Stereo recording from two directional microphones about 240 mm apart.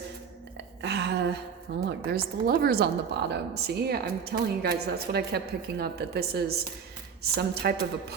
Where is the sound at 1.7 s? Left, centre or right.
Right.